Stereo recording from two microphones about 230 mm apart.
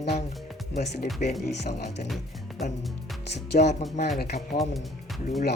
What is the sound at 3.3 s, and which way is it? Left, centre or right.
Speech, left.